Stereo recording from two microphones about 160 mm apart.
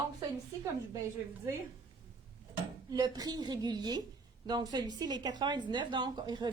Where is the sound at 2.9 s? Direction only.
25° right (ahead or behind).